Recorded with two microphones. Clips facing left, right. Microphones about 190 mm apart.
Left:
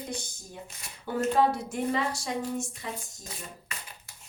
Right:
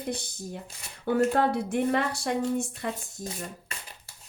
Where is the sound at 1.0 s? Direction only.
60° right (ahead or behind).